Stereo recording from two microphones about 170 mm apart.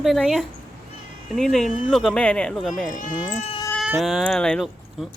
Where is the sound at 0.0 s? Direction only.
Centre (ahead or behind).